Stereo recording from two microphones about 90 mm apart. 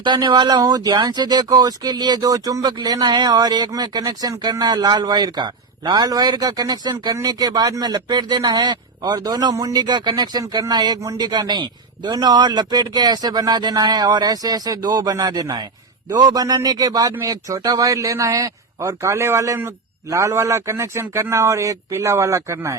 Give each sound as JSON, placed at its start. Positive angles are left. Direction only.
{"t": 0.0, "sound": "speech", "side_deg": -55}
{"t": 2.7, "sound": "speech", "side_deg": -50}
{"t": 11.0, "sound": "a man's voice", "side_deg": -40}
{"t": 11.3, "sound": "a man's voice", "side_deg": -55}